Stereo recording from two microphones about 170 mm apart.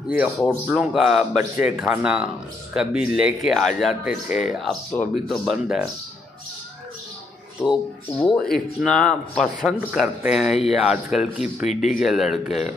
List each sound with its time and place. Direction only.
0.1 s speech: 5° right (ahead or behind)
7.6 s speech: centre (ahead or behind)
9.7 s speech: 10° right (ahead or behind)
11.7 s speech: 45° left (ahead or behind)
12.0 s speech: centre (ahead or behind)